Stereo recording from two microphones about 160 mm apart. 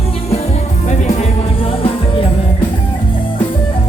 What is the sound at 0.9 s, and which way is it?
Music, 45° left (ahead or behind).